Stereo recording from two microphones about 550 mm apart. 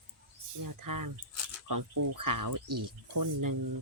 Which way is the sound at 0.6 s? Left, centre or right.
Right.